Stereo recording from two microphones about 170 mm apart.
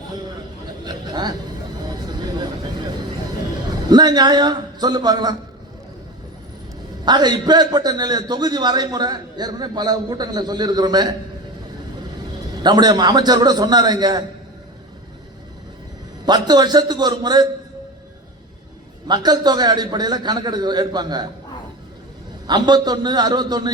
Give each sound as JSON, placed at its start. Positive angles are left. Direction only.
{"t": 0.9, "sound": "speech", "side_deg": -25}
{"t": 1.9, "sound": "a sound", "side_deg": -25}
{"t": 3.8, "sound": "a man's voice", "side_deg": -25}
{"t": 7.0, "sound": "a man's voice", "side_deg": -25}
{"t": 12.6, "sound": "a man's voice", "side_deg": -25}
{"t": 16.2, "sound": "a man's voice", "side_deg": -25}
{"t": 19.0, "sound": "a man's voice", "side_deg": -25}
{"t": 22.4, "sound": "a man's voice", "side_deg": -25}